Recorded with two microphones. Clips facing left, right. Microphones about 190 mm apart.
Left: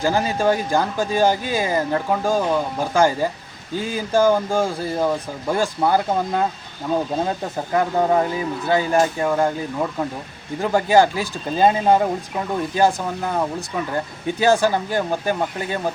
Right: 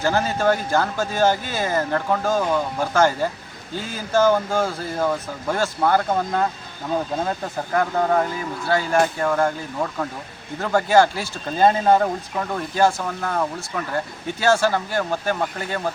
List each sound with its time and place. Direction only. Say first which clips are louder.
0.0 s speech: left 1 dB; 15° left (ahead or behind)
7.7 s speech: left 2 dB; 20° left (ahead or behind)